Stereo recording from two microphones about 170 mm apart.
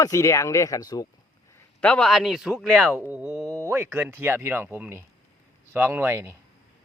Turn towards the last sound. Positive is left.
turn(degrees=-15)  # may be behind; listen again after turning